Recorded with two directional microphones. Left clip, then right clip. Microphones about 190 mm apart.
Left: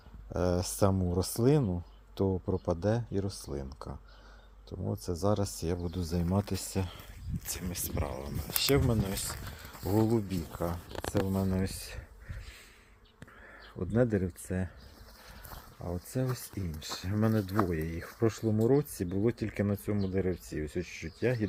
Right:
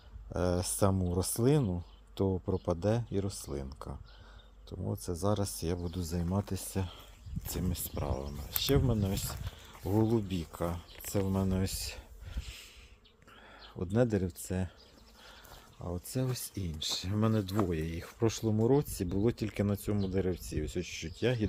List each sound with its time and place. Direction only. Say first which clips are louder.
0.3 s speech: left 2 dB; centre (ahead or behind)
11.1 s speech: left 1 dB; 20° right (ahead or behind)
13.7 s speech: left 1 dB; 20° right (ahead or behind)
15.8 s speech: left 1 dB; centre (ahead or behind)
16.4 s speech: right 4 dB; 20° right (ahead or behind)